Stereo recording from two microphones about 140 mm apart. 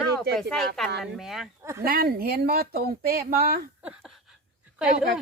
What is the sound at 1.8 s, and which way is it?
Speech, 90° right.